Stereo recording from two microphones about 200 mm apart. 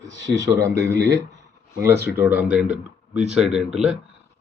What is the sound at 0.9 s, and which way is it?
Speech, 60° right (ahead or behind).